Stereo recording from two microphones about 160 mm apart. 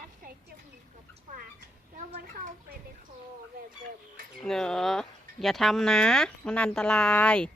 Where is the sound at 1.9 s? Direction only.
55° right (ahead or behind).